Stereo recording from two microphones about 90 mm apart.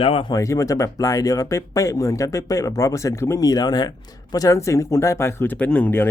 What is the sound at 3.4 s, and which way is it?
Speech, 45° left (ahead or behind).